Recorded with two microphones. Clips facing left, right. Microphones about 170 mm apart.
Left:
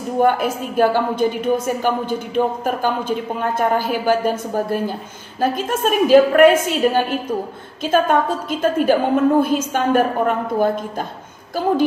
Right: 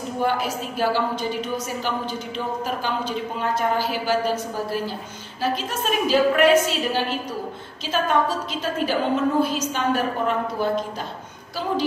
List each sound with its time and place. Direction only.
0.2 s a woman's voice: 50° left (ahead or behind)